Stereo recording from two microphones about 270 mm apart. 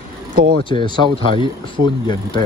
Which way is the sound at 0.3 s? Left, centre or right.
Right.